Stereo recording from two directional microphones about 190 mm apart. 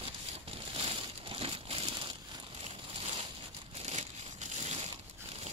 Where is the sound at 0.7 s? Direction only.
30° right (ahead or behind).